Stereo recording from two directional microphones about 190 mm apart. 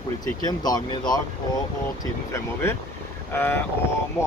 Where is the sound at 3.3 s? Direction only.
10° left (ahead or behind).